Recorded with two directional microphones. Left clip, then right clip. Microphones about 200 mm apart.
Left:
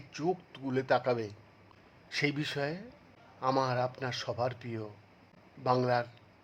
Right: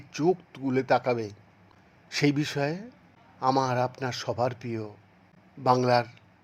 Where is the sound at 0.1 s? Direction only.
20° right (ahead or behind).